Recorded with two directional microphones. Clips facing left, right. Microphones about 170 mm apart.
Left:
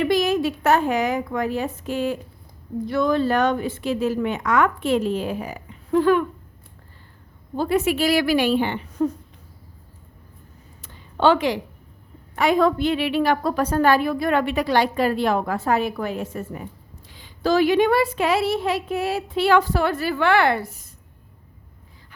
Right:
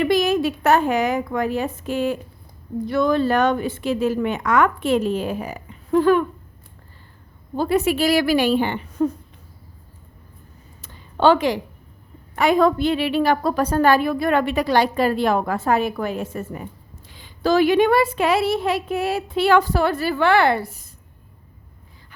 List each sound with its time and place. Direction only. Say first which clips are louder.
0.0 s a woman's voice: right 1 dB; 60° right (ahead or behind); by 6.2 s 40° right (ahead or behind)
7.5 s a woman's voice: right 1 dB; 40° right (ahead or behind)
9.0 s a woman's voice: right 1 dB; 60° right (ahead or behind)
10.8 s a sound: right 2 dB; 40° right (ahead or behind)
12.4 s a woman's voice: right 2 dB; 50° right (ahead or behind)